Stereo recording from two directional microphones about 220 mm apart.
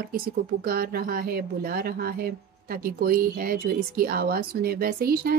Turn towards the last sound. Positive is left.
turn(degrees=-45)  # may be behind; listen again after turning